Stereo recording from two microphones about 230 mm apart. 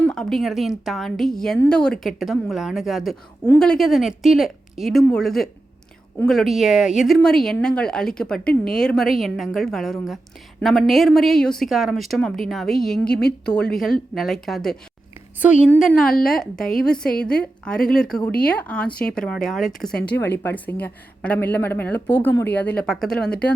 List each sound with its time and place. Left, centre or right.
0.0 s a woman's voice: centre